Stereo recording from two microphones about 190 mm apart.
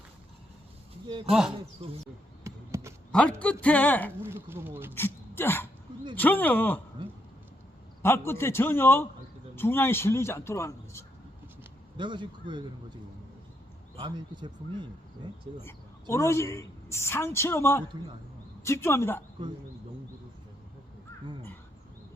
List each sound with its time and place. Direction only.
1.3 s speech: centre (ahead or behind)
1.8 s speech: 30° right (ahead or behind)
2.4 s basketball bounce: 15° right (ahead or behind)
3.1 s a man's voice: 5° left (ahead or behind)
4.2 s speech: 10° right (ahead or behind)
4.9 s a man's voice: 10° left (ahead or behind)
8.0 s a man's voice: 15° left (ahead or behind)
11.9 s speech: 25° right (ahead or behind)
13.9 s speech: 25° right (ahead or behind)
15.6 s a woman's voice: 15° left (ahead or behind)